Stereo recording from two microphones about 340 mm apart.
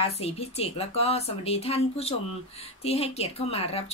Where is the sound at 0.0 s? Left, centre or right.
Centre.